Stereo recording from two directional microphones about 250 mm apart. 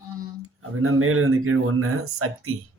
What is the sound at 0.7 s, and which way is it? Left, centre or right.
Speech, right.